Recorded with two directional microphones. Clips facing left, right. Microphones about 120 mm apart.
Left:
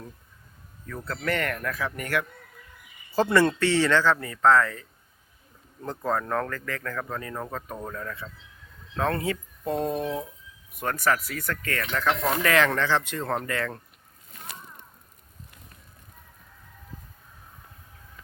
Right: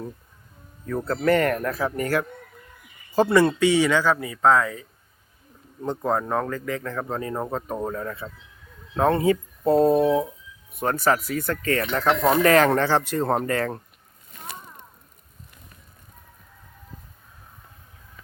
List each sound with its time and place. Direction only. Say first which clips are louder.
0.9 s speech: right 9 dB; 40° right (ahead or behind)
3.1 s speech: right 3 dB; 15° right (ahead or behind); by 13.7 s 35° right (ahead or behind)